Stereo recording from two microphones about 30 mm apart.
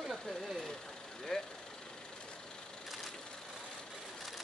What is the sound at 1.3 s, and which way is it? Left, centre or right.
Speech, left.